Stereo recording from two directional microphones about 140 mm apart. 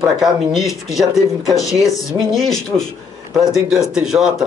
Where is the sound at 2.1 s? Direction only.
Centre (ahead or behind).